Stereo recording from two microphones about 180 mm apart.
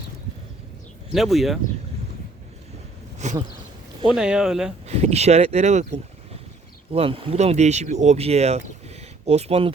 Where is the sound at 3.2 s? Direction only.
40° right (ahead or behind).